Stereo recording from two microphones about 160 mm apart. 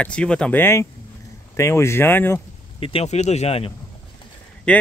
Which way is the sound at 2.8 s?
35° left (ahead or behind).